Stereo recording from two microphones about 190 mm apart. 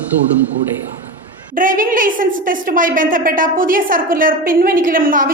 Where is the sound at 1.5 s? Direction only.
45° right (ahead or behind).